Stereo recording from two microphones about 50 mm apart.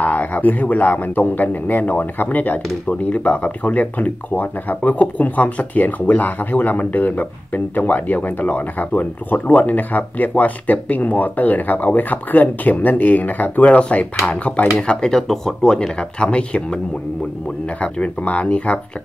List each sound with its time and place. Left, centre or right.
0.0 s speech: left